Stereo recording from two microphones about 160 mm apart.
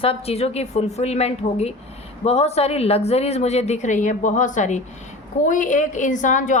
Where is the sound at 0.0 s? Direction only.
35° left (ahead or behind).